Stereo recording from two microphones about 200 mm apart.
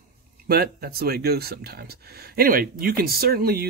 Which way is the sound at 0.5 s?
50° right (ahead or behind).